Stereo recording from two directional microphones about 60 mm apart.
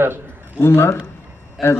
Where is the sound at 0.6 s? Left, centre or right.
Left.